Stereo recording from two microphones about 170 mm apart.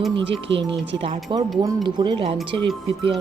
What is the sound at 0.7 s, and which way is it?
A woman's voice, 30° right (ahead or behind).